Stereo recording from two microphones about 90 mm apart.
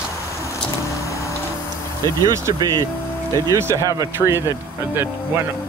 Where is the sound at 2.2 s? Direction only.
35° right (ahead or behind).